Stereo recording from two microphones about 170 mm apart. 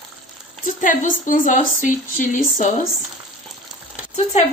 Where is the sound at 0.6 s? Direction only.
50° left (ahead or behind).